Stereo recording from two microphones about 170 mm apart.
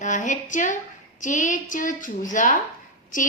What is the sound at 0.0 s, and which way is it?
A woman's voice, 45° left (ahead or behind).